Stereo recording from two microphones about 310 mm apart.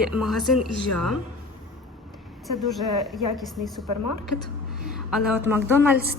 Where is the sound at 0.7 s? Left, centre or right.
Left.